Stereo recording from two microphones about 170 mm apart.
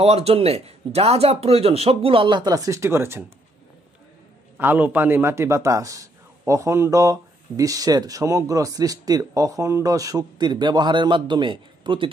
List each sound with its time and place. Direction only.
0.0 s speech: 35° right (ahead or behind); by 3.3 s 15° right (ahead or behind)
4.6 s a man's voice: 10° right (ahead or behind); by 12.1 s 30° right (ahead or behind)